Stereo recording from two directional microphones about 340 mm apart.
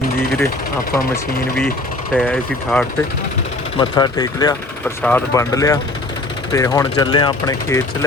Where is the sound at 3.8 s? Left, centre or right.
Centre.